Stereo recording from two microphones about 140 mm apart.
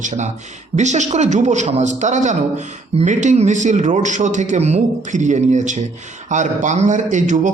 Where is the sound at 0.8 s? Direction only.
55° right (ahead or behind).